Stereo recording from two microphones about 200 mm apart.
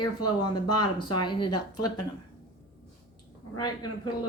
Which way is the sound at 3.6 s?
20° left (ahead or behind).